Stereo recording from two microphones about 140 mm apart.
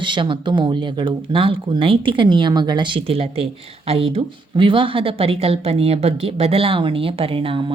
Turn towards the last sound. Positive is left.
turn(degrees=-40)  # may be behind; listen again after turning